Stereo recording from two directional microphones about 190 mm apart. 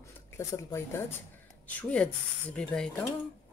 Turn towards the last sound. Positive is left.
turn(degrees=5)  # may be behind; listen again after turning